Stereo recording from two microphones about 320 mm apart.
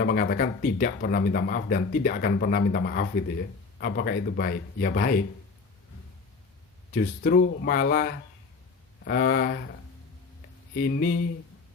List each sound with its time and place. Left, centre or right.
0.0 s speech: left
6.9 s speech: left
10.8 s speech: left